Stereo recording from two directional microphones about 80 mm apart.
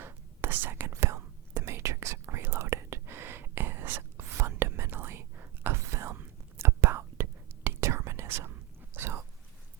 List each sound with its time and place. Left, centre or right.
0.0 s whispering: right